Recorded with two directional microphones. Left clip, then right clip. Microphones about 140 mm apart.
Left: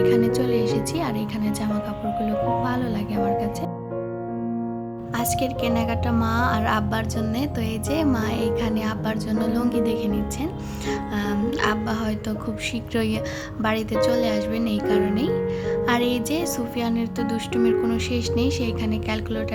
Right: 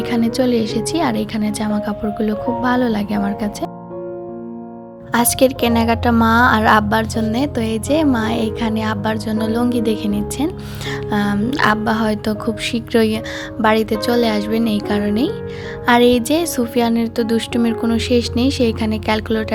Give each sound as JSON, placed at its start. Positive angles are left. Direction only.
{"t": 0.0, "sound": "speech", "side_deg": -40}
{"t": 5.1, "sound": "a woman's voice", "side_deg": -55}